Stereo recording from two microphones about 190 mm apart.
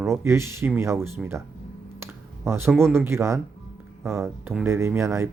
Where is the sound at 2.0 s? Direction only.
15° right (ahead or behind).